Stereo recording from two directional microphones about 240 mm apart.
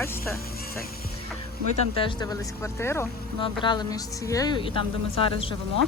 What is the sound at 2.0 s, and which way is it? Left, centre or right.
A woman's voice, centre.